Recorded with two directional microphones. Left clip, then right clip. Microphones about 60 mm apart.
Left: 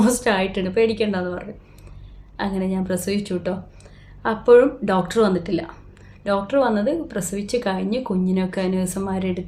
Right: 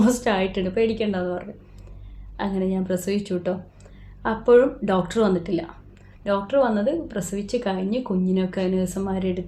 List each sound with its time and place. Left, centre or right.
0.0 s a woman's voice: left